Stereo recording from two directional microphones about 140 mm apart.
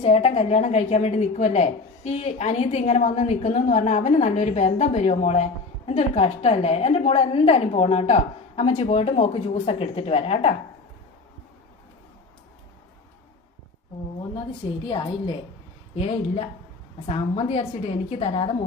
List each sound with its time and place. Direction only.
0.0 s a woman's voice: 45° left (ahead or behind)
16.0 s a woman's voice: 45° left (ahead or behind)